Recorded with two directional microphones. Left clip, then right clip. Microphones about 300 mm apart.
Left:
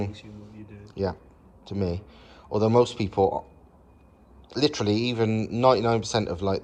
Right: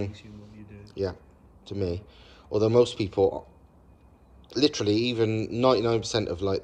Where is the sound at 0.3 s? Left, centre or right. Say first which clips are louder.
Left 3 dB; centre.